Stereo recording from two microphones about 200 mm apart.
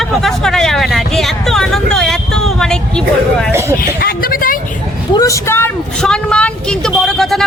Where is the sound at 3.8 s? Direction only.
45° left (ahead or behind).